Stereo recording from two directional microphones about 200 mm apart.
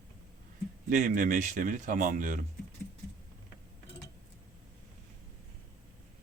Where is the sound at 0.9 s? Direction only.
40° right (ahead or behind).